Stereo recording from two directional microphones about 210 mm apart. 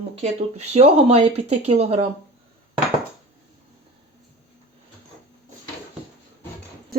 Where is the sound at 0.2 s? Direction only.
30° right (ahead or behind).